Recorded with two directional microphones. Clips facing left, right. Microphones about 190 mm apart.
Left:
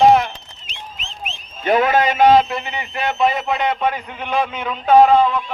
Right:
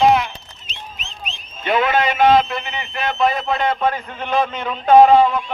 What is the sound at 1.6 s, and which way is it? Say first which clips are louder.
A man's voice: left 2 dB; 40° left (ahead or behind).